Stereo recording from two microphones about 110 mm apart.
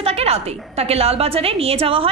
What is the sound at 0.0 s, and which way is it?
A woman's voice, 65° right (ahead or behind).